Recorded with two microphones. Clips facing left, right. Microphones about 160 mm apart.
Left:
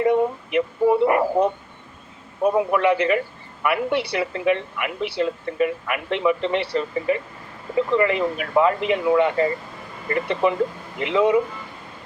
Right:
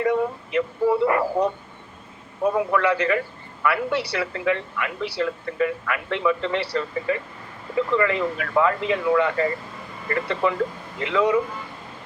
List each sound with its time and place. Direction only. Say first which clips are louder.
0.0 s a man's voice: left 3 dB; 20° left (ahead or behind)